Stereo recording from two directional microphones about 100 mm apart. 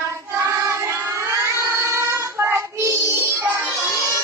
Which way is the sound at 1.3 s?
25° right (ahead or behind).